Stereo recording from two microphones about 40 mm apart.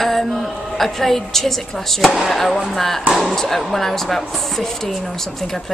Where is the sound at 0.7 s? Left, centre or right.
Centre.